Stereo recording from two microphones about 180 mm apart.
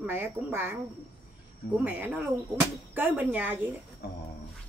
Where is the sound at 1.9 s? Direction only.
10° right (ahead or behind).